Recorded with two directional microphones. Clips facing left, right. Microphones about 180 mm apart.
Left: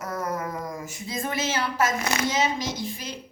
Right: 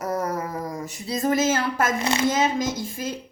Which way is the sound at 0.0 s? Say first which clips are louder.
Right 4 dB; 30° right (ahead or behind).